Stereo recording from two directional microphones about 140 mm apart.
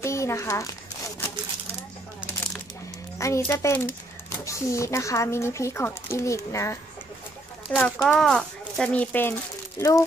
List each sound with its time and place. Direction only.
0.0 s a child's voice: 20° left (ahead or behind)
3.2 s speech: 20° left (ahead or behind)
7.7 s speech: 5° left (ahead or behind); by 10.0 s 20° left (ahead or behind)